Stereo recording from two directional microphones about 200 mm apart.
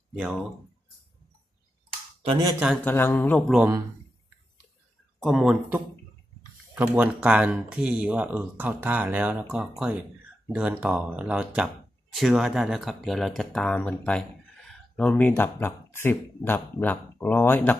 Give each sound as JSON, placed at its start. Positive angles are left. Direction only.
{"t": 2.2, "sound": "speech", "side_deg": -25}
{"t": 2.8, "sound": "speech", "side_deg": 10}
{"t": 3.5, "sound": "speech", "side_deg": -10}
{"t": 5.2, "sound": "speech", "side_deg": 0}